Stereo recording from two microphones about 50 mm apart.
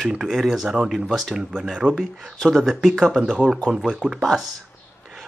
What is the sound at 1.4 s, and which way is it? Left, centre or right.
Speech, centre.